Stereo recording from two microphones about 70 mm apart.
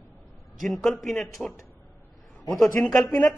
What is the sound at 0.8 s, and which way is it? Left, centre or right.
Speech, centre.